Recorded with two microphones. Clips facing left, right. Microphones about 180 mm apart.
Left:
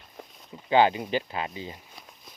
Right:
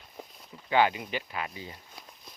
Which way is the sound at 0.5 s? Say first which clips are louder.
Left 4 dB; 25° left (ahead or behind).